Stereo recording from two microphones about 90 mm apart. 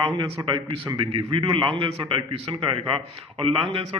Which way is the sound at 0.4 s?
60° right (ahead or behind).